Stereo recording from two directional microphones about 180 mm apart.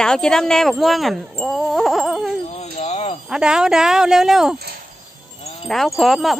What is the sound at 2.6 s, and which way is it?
Wind chime, 35° left (ahead or behind).